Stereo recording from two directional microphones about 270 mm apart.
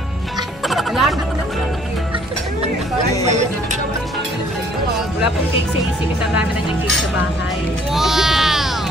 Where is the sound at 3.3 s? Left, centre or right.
Right.